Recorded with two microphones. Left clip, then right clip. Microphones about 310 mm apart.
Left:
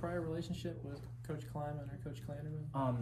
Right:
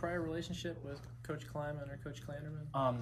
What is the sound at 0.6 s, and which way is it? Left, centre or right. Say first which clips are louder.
Speech: right 2 dB; centre.